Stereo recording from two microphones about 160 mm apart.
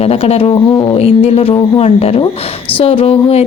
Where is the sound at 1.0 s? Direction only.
40° left (ahead or behind).